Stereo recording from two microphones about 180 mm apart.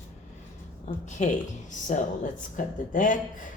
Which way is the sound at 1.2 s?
40° left (ahead or behind).